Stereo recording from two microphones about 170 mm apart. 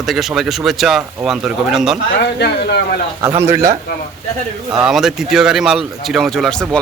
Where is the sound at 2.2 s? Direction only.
75° left (ahead or behind).